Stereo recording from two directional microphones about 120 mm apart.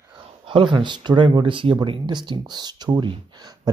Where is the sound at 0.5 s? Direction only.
40° right (ahead or behind).